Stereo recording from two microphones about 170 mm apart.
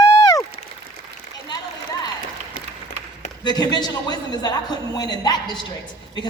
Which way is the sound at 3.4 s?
25° left (ahead or behind).